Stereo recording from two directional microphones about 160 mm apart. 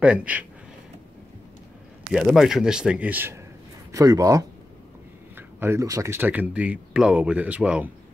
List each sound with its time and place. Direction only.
0.0 s speech: 10° right (ahead or behind)
2.1 s speech: centre (ahead or behind)
3.9 s a man's voice: 20° right (ahead or behind)